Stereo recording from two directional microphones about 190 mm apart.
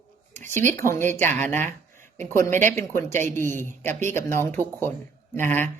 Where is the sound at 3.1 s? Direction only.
40° right (ahead or behind).